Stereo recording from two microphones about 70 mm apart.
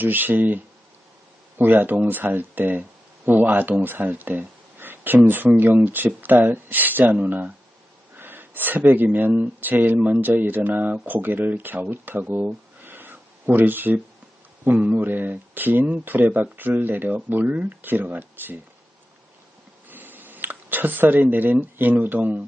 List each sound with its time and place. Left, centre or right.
0.0 s speech: right
12.5 s a sound: right
14.6 s speech: right
19.9 s speech: right